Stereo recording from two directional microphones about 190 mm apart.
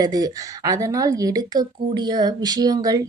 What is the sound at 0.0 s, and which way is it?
A woman's voice, 20° right (ahead or behind).